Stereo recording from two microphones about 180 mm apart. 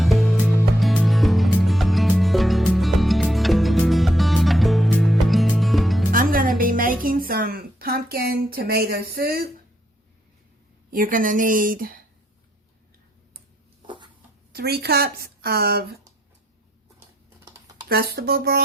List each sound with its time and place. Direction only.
0.0 s music: centre (ahead or behind)
6.1 s music: 50° right (ahead or behind)
10.9 s speech: 50° right (ahead or behind)
13.8 s a sound: 25° right (ahead or behind)
14.5 s a woman's voice: 60° right (ahead or behind)
17.8 s a woman's voice: 60° right (ahead or behind)